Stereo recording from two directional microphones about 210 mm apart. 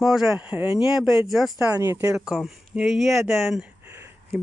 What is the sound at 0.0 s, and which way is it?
Speech, centre (ahead or behind).